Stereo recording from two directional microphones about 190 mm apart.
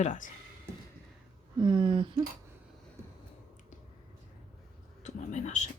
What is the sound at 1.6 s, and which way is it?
Speech, 25° right (ahead or behind).